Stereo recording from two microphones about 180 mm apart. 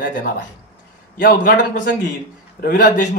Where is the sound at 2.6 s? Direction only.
50° left (ahead or behind).